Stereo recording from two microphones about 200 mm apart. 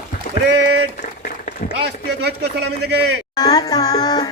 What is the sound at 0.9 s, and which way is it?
Applause, 50° left (ahead or behind).